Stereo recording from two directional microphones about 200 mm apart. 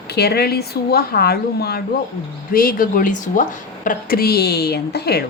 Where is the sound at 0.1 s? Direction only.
55° left (ahead or behind).